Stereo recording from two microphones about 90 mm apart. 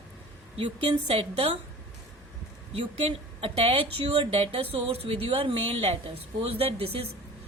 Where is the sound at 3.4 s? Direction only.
90° right.